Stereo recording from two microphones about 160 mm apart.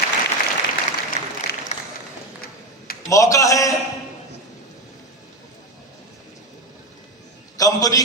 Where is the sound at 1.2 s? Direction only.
45° left (ahead or behind).